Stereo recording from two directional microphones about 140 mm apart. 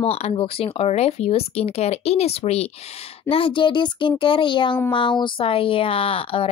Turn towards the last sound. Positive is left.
turn(degrees=40)  # may be behind; listen again after turning